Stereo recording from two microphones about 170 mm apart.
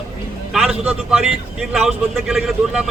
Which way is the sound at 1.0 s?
5° right (ahead or behind).